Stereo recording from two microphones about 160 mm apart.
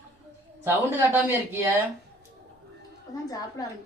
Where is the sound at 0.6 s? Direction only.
15° right (ahead or behind).